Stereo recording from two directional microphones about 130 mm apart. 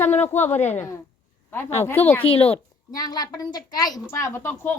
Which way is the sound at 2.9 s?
30° left (ahead or behind).